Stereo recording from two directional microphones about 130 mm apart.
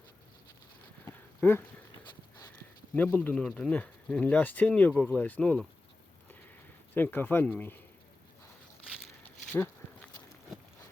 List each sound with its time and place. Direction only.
1.0 s dog: 15° left (ahead or behind)
2.9 s speech: 10° left (ahead or behind)
6.9 s speech: 15° left (ahead or behind)